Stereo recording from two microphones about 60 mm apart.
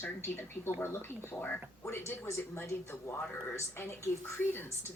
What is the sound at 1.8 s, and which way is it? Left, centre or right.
Speech, left.